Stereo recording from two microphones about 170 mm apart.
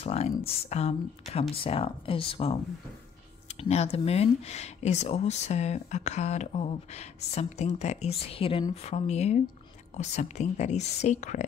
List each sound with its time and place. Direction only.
0.0 s speech: 35° left (ahead or behind)